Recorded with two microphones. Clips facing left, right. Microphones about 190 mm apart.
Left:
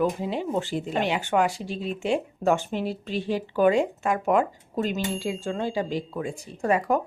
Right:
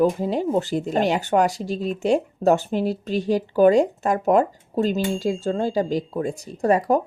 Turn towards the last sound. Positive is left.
turn(degrees=-35)  # may be behind; listen again after turning